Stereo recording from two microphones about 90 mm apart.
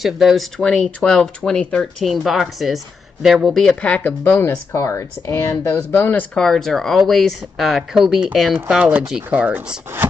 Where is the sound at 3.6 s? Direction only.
10° left (ahead or behind).